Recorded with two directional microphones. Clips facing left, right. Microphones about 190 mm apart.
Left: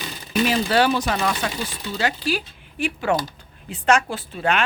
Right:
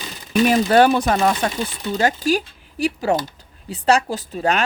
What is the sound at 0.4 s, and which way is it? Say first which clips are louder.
A woman's voice: right 5 dB; 50° right (ahead or behind).